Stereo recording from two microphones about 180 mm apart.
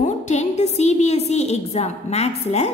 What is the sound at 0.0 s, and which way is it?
A woman's voice, 40° left (ahead or behind).